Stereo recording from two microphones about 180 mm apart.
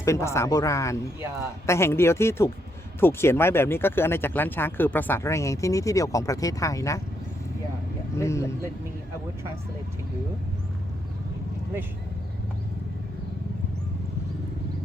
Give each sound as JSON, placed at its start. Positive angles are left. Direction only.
{"t": 0.0, "sound": "speech", "side_deg": 15}
{"t": 8.1, "sound": "speech", "side_deg": 15}